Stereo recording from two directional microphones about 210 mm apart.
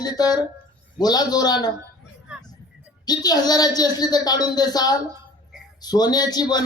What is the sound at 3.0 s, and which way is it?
A man's voice, 20° left (ahead or behind).